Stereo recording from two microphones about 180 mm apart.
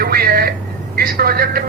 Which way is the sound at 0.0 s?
55° right (ahead or behind).